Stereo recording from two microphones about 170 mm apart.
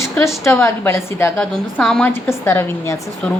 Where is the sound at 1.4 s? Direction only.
5° left (ahead or behind).